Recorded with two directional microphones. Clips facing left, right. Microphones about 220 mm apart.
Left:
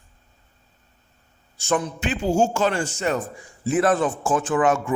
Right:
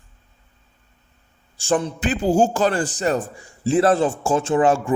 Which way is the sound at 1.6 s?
30° right (ahead or behind).